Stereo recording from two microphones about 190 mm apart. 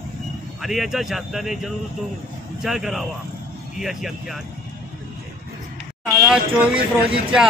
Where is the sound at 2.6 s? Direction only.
Centre (ahead or behind).